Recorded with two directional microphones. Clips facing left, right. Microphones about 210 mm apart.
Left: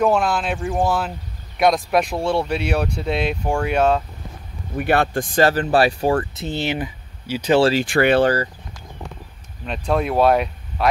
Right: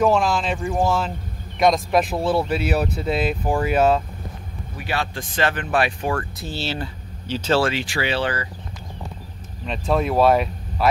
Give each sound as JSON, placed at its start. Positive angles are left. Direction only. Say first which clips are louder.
{"t": 0.0, "sound": "speech", "louder": "even", "side_deg": 0}
{"t": 4.7, "sound": "speech", "louder": "left 8 dB", "side_deg": 55}
{"t": 7.8, "sound": "speech", "louder": "left 8 dB", "side_deg": 55}
{"t": 9.7, "sound": "speech", "louder": "even", "side_deg": 0}